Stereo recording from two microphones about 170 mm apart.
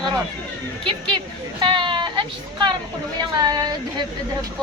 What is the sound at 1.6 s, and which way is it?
Speech, 30° right (ahead or behind).